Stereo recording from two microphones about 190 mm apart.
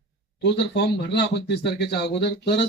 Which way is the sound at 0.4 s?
65° left (ahead or behind).